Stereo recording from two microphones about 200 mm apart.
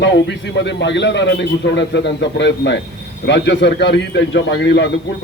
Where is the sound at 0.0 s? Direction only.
60° left (ahead or behind).